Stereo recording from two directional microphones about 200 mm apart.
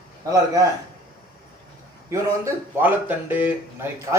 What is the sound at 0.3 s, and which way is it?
Speech, 20° right (ahead or behind).